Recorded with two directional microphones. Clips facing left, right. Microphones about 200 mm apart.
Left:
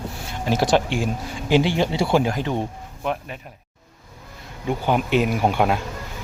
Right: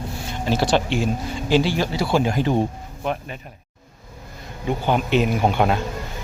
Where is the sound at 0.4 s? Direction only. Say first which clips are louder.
Left 1 dB; 15° left (ahead or behind).